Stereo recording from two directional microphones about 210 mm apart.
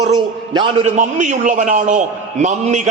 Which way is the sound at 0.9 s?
35° right (ahead or behind).